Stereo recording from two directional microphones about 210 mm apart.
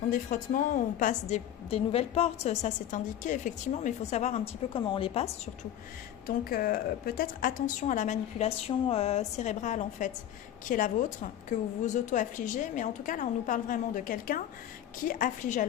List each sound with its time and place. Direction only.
0.1 s a woman's voice: 40° left (ahead or behind)
6.2 s a woman's voice: 45° left (ahead or behind)